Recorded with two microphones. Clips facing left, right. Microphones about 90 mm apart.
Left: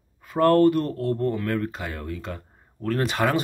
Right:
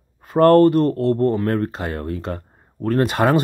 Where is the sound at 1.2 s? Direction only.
35° right (ahead or behind).